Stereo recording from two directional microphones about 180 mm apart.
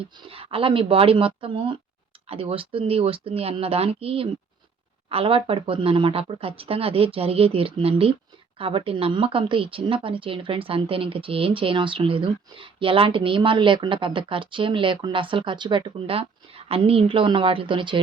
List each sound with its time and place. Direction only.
0.0 s speech: 30° right (ahead or behind)